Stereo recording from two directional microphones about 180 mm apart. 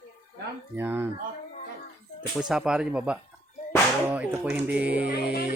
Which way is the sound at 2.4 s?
5° right (ahead or behind).